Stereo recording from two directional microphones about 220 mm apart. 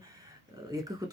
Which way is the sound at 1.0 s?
20° right (ahead or behind).